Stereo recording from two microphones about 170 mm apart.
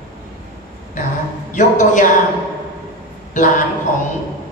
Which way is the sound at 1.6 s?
45° left (ahead or behind).